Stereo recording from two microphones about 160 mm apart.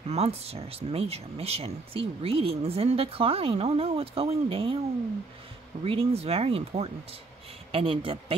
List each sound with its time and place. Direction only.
0.1 s speech: 40° right (ahead or behind)
5.9 s speech: 40° right (ahead or behind)